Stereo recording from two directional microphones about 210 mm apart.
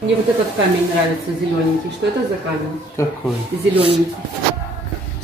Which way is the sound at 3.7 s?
25° right (ahead or behind).